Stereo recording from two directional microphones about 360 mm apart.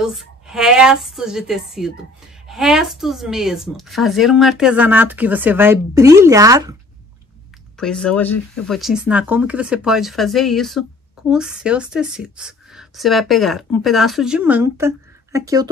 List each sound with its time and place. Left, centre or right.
0.0 s a woman's voice: centre
7.7 s a woman's voice: centre